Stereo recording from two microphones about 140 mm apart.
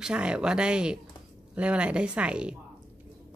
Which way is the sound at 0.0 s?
5° right (ahead or behind).